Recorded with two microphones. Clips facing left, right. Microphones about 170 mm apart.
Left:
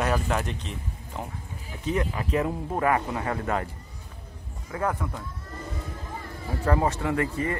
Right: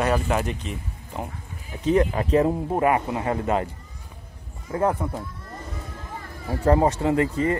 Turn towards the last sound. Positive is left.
turn(degrees=-25)  # may be behind; listen again after turning